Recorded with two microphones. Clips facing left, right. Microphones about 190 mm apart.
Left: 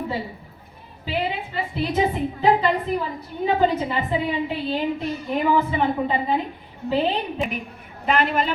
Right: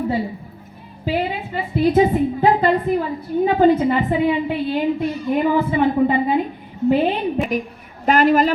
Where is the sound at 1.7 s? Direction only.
50° right (ahead or behind).